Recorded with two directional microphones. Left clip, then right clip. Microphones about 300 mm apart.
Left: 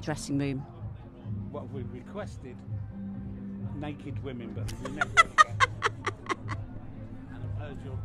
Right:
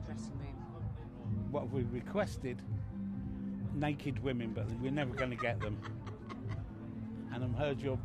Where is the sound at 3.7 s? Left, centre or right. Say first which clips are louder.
Right 3 dB; centre.